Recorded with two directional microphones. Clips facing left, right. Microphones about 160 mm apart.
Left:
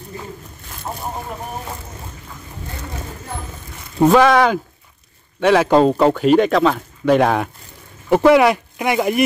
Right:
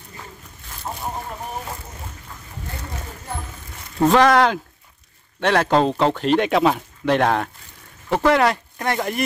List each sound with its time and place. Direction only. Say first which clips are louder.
4.0 s speech: left 3 dB; 5° left (ahead or behind)
6.5 s speech: left 2 dB; 10° right (ahead or behind)
7.1 s speech: left 4 dB; 5° left (ahead or behind)